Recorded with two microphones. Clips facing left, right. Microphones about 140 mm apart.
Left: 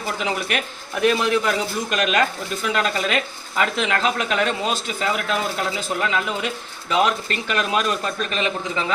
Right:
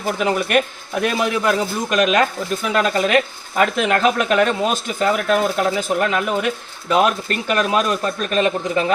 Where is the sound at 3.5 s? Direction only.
50° right (ahead or behind).